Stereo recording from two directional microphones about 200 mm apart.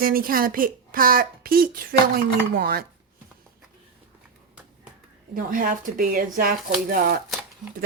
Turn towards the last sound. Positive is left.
turn(degrees=-45)  # may be behind; listen again after turning